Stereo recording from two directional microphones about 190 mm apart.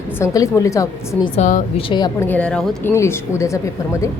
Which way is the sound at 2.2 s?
10° left (ahead or behind).